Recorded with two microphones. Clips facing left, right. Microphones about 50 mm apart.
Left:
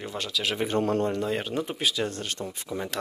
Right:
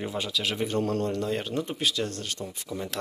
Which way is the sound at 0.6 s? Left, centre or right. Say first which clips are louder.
Left 3 dB; left.